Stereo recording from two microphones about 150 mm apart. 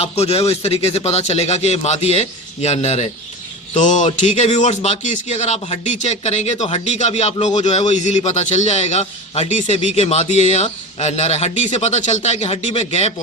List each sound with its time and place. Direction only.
0.0 s a man's voice: 45° left (ahead or behind)